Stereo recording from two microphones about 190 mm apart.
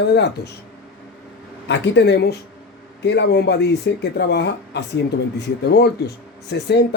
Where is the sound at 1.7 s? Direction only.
65° left (ahead or behind).